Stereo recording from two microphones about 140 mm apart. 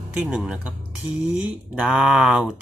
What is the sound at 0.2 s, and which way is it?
Speech, centre (ahead or behind).